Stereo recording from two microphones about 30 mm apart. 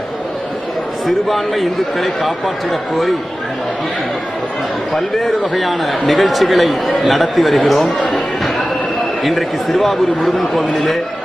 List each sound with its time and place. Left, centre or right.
1.0 s a man's voice: centre
4.9 s a man's voice: centre
8.0 s a sound: centre
9.2 s a man's voice: centre